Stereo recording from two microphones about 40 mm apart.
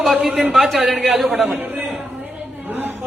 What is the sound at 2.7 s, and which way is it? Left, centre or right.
Chatter, right.